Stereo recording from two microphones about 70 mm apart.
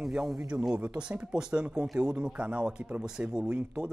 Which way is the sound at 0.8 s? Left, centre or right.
Centre.